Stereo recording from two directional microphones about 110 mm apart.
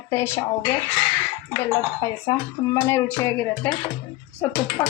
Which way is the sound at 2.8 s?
25° left (ahead or behind).